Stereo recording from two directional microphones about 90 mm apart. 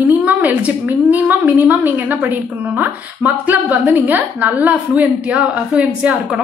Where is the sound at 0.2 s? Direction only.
20° right (ahead or behind).